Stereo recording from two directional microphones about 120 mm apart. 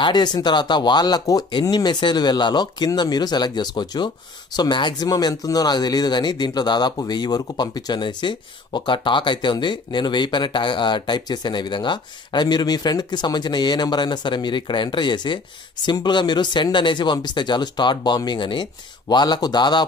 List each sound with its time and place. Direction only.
0.0 s speech: 35° left (ahead or behind)